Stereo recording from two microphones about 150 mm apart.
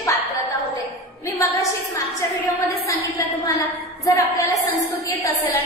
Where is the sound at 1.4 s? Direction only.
20° left (ahead or behind).